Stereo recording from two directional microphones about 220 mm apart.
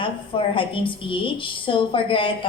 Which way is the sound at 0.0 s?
25° left (ahead or behind).